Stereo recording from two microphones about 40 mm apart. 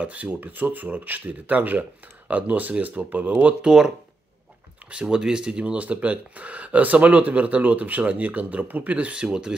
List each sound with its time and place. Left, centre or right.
0.0 s speech: right
3.6 s speech: centre
5.1 s speech: right
5.8 s speech: right
9.1 s speech: right